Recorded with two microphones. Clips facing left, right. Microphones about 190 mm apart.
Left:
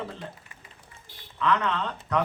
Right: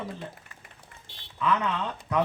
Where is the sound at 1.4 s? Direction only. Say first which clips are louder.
Left 1 dB; 10° right (ahead or behind).